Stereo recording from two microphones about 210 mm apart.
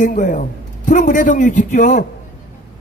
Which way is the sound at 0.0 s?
40° left (ahead or behind).